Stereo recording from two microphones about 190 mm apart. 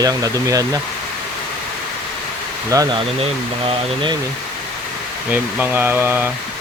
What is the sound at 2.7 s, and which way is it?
Speech, 20° right (ahead or behind).